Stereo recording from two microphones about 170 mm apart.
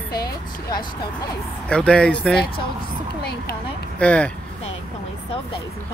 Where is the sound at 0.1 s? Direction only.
25° left (ahead or behind).